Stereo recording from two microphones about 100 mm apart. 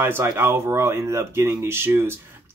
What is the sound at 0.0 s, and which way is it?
Speech, 25° right (ahead or behind).